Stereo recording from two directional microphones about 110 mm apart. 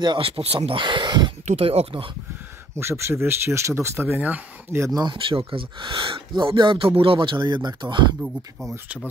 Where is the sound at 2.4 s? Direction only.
20° right (ahead or behind).